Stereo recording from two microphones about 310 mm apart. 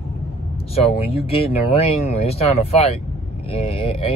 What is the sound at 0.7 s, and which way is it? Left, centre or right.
Speech, centre.